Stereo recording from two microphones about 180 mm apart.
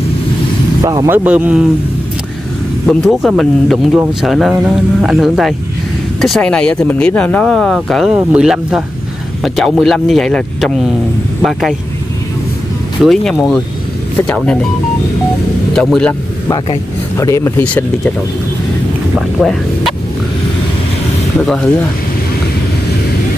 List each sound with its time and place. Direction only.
0.8 s speech: 15° right (ahead or behind)
2.9 s speech: centre (ahead or behind)
13.0 s speech: centre (ahead or behind)
15.7 s speech: 5° left (ahead or behind)
16.4 s speech: 25° left (ahead or behind)
19.4 s speech: centre (ahead or behind)